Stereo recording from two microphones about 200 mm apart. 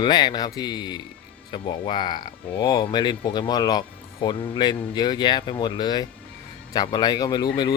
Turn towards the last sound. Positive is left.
turn(degrees=20)  # may be behind; listen again after turning